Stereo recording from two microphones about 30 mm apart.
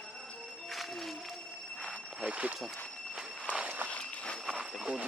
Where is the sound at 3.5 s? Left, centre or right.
Right.